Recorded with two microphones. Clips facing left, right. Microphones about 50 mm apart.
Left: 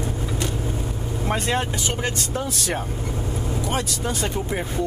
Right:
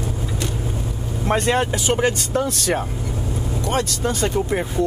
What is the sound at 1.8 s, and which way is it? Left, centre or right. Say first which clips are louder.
Speech: right 7 dB; right.